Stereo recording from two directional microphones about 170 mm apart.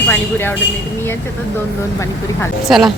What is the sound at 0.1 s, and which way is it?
Speech, 10° left (ahead or behind).